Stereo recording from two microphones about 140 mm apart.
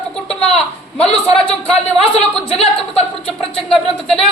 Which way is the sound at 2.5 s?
45° left (ahead or behind).